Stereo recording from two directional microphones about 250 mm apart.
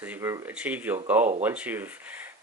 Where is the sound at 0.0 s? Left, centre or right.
Centre.